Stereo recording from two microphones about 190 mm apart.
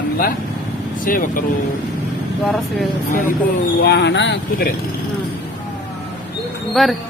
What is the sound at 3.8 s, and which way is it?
Speech, 65° left (ahead or behind).